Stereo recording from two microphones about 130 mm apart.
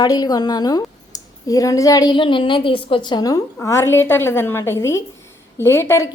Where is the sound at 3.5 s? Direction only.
20° left (ahead or behind).